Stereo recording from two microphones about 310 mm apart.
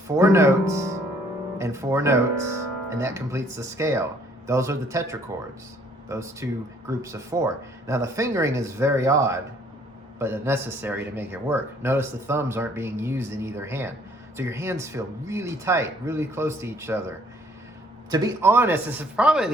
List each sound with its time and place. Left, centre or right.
0.2 s a man's voice: centre